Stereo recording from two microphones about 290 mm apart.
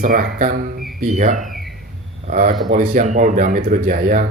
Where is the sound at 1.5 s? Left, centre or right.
Centre.